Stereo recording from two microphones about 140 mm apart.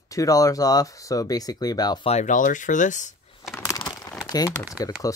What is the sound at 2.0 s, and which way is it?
Speech, 55° left (ahead or behind).